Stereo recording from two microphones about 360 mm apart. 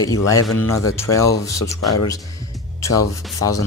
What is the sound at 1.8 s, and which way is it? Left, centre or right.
Speech, left.